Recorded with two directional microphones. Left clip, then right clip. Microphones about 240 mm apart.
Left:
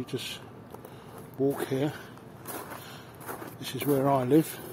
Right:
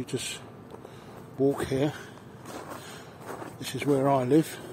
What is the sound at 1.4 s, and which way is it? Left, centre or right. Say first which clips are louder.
Speech: right 2 dB; centre.